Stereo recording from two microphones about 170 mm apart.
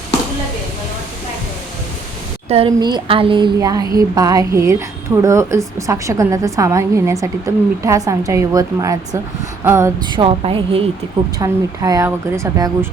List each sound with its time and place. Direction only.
2.5 s a woman's voice: 30° right (ahead or behind)
11.3 s a woman's voice: 20° right (ahead or behind)